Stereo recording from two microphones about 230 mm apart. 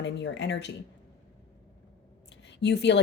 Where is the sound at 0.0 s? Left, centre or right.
Left.